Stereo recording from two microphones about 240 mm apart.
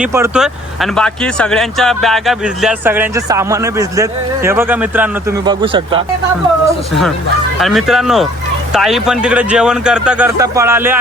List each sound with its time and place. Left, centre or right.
0.0 s speech: centre
5.5 s speech: right
7.6 s speech: centre